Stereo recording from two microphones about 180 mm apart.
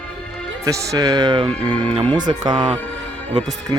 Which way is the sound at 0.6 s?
20° right (ahead or behind).